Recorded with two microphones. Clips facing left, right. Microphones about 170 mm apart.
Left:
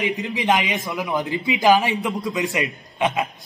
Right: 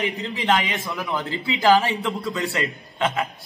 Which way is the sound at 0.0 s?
15° left (ahead or behind).